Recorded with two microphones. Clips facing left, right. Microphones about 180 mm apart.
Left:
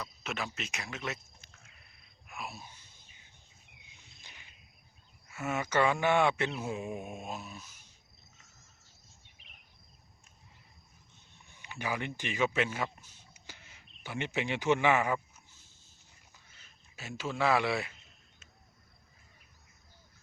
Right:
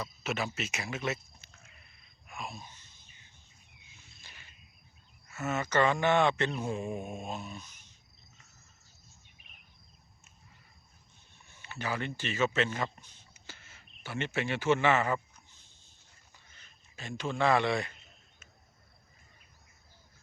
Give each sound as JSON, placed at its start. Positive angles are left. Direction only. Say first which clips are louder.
{"t": 0.0, "sound": "speech", "louder": "right 4 dB", "side_deg": 0}
{"t": 2.2, "sound": "a sound", "louder": "right 1 dB", "side_deg": 5}
{"t": 4.2, "sound": "a sound", "louder": "even", "side_deg": 15}
{"t": 5.3, "sound": "speech", "louder": "right 1 dB", "side_deg": 10}
{"t": 11.4, "sound": "speech", "louder": "even", "side_deg": 15}
{"t": 16.6, "sound": "speech", "louder": "right 2 dB", "side_deg": 5}